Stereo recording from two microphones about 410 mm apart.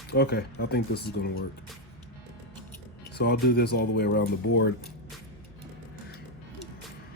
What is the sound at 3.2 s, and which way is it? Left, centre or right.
Speech, left.